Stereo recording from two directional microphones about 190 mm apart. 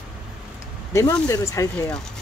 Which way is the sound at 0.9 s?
15° left (ahead or behind).